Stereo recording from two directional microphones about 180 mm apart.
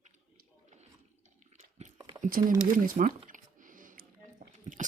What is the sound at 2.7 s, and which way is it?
Speech, 50° right (ahead or behind).